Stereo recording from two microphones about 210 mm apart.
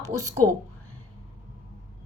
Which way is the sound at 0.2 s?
10° left (ahead or behind).